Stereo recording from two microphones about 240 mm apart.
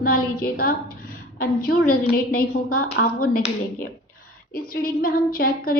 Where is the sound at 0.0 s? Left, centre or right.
Left.